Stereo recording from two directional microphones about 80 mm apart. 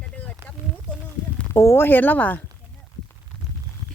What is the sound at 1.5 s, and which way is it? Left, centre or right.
Speech, left.